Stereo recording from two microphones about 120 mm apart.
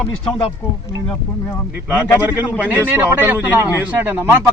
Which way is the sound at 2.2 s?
15° right (ahead or behind).